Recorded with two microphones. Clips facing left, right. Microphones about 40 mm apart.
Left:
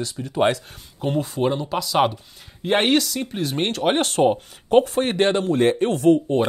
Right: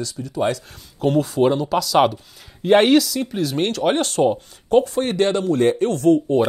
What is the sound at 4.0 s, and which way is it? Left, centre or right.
Speech, left.